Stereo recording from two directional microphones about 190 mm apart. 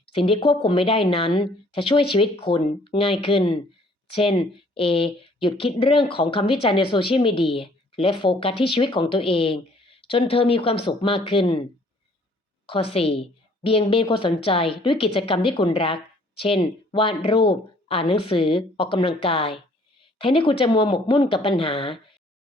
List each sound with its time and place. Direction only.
0.1 s speech: 30° left (ahead or behind)
12.6 s a woman's voice: 30° left (ahead or behind)